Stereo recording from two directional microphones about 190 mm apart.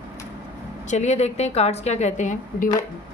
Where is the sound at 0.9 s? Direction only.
35° left (ahead or behind).